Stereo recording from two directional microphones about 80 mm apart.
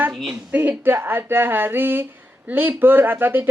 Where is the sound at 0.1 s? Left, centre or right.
Centre.